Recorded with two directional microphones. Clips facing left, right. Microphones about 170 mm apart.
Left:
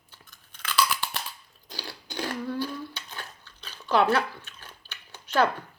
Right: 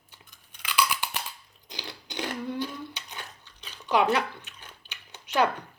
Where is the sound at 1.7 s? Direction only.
20° right (ahead or behind).